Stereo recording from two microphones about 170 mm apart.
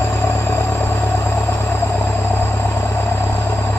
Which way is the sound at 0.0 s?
15° left (ahead or behind).